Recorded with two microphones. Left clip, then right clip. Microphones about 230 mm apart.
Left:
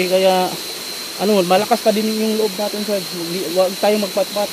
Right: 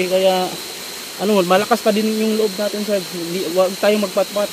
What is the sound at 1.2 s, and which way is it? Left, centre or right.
Speech, centre.